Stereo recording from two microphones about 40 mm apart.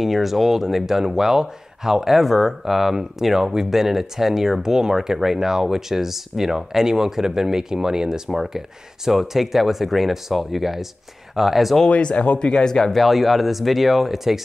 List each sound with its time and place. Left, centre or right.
0.0 s speech: centre
11.9 s speech: left
12.9 s speech: centre